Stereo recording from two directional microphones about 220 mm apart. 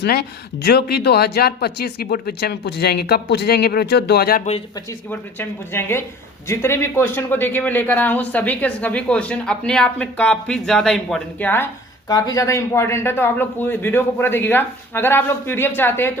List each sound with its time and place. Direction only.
0.0 s speech: 45° left (ahead or behind)
4.9 s speech: 10° left (ahead or behind)